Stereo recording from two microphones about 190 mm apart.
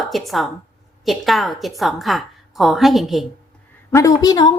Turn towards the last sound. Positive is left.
turn(degrees=20)  # may be behind; listen again after turning